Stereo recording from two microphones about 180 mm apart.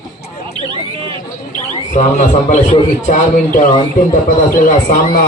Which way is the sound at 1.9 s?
45° left (ahead or behind).